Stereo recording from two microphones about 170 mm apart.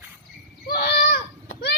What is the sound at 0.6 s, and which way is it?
Children playing, 75° left (ahead or behind).